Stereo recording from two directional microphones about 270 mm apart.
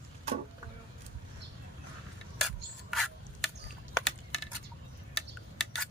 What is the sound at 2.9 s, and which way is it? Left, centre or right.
Rub, centre.